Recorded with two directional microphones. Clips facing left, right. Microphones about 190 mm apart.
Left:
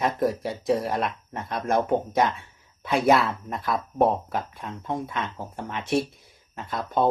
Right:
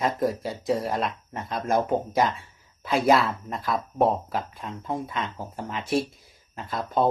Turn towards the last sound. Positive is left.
turn(degrees=0)  # may be behind; listen again after turning